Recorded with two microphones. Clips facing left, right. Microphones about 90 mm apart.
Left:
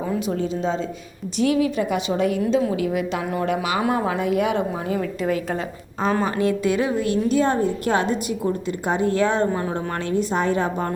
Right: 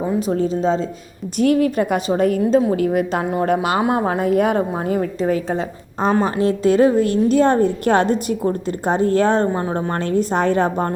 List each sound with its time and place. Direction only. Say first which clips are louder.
0.2 s a woman's voice: right 5 dB; 40° right (ahead or behind)
1.4 s a woman's voice: right 4 dB; 50° right (ahead or behind)
3.8 s a woman's voice: right 3 dB; 25° right (ahead or behind)
4.0 s a woman's voice: right 4 dB; 40° right (ahead or behind)
4.9 s a woman's voice: right 4 dB; 30° right (ahead or behind); by 10.9 s 50° right (ahead or behind)